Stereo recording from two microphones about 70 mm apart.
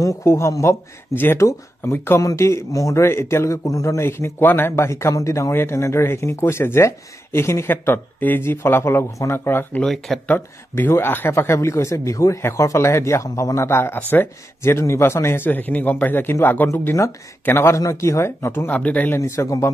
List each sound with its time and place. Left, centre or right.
0.0 s speech: left
1.1 s speech: left
3.0 s speech: left
3.6 s speech: left
9.8 s speech: centre
10.2 s speech: left
10.9 s speech: left
17.7 s speech: left
18.7 s speech: left
19.1 s speech: left